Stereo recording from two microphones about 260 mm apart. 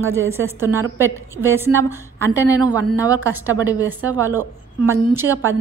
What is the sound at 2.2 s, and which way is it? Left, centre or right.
Speech, centre.